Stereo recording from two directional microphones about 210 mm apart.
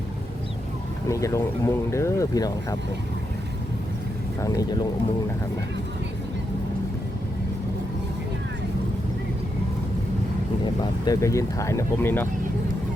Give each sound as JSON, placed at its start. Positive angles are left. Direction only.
{"t": 1.0, "sound": "speech", "side_deg": 15}
{"t": 4.4, "sound": "speech", "side_deg": 20}
{"t": 11.0, "sound": "speech", "side_deg": 15}